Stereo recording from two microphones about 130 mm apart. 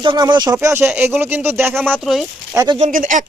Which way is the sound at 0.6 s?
15° right (ahead or behind).